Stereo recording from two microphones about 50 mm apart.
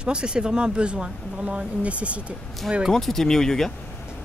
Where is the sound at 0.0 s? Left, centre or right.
Centre.